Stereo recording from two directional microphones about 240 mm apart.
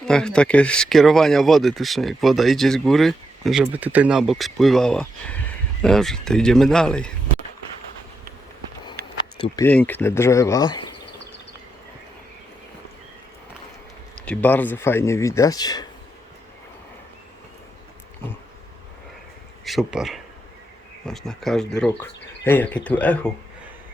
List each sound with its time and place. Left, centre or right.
0.0 s speech: centre
9.1 s a sound: centre
9.6 s speech: centre
14.3 s speech: centre
19.6 s speech: centre